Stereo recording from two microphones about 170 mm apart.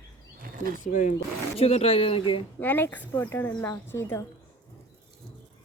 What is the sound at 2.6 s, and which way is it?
Speech, 10° left (ahead or behind).